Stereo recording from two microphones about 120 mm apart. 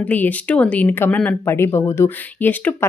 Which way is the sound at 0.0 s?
15° left (ahead or behind).